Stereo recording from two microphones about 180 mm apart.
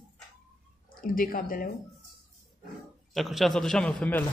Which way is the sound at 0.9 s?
50° left (ahead or behind).